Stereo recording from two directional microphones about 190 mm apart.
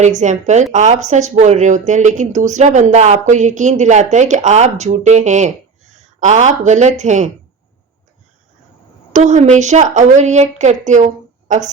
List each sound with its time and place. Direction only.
0.0 s speech: 40° right (ahead or behind)
9.1 s speech: 40° right (ahead or behind)